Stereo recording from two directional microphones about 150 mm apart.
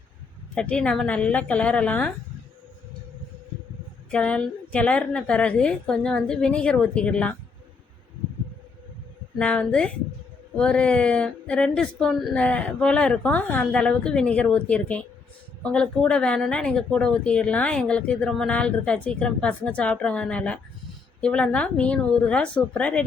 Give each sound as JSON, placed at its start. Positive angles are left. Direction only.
{"t": 0.5, "sound": "speech", "side_deg": 5}
{"t": 4.1, "sound": "speech", "side_deg": 10}
{"t": 9.4, "sound": "speech", "side_deg": 5}